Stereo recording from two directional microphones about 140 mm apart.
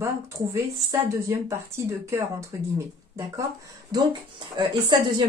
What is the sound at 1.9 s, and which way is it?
Speech, 20° right (ahead or behind).